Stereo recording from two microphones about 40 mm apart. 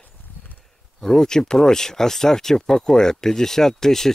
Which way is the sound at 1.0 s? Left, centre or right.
Centre.